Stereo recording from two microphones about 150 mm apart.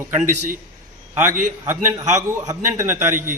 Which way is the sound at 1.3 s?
60° right (ahead or behind).